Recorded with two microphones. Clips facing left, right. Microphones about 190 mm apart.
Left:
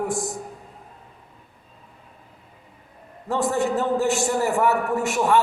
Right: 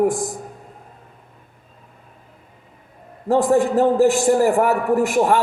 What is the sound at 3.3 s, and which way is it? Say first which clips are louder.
A man's voice: right 6 dB; 55° right (ahead or behind).